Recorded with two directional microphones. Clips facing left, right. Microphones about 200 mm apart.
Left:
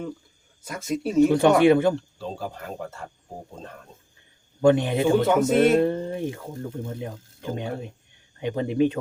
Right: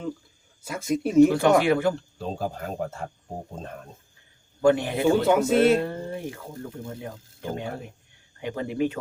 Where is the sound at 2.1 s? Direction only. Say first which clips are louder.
Right 2 dB; 45° right (ahead or behind).